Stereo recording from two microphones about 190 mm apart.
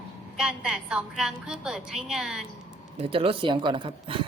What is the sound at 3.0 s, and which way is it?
Speech, 30° right (ahead or behind).